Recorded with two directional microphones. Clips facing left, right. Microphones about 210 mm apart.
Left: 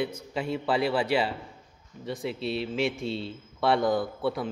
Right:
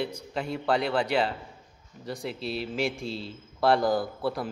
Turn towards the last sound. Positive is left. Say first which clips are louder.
# left 1 dB
turn(degrees=0)  # may be behind; listen again after turning